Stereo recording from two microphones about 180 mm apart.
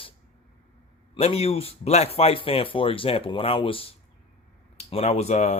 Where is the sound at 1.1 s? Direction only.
35° left (ahead or behind).